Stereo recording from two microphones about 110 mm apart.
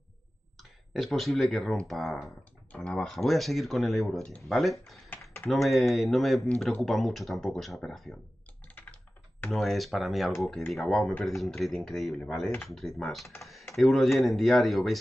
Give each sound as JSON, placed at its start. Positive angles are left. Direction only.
{"t": 0.6, "sound": "speech", "side_deg": 0}
{"t": 5.1, "sound": "typing", "side_deg": 20}
{"t": 5.5, "sound": "speech", "side_deg": 0}
{"t": 9.5, "sound": "speech", "side_deg": 0}
{"t": 13.4, "sound": "typing", "side_deg": 0}
{"t": 13.7, "sound": "speech", "side_deg": 0}